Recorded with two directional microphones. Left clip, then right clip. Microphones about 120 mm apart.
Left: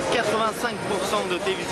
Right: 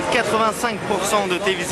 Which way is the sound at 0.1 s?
25° right (ahead or behind).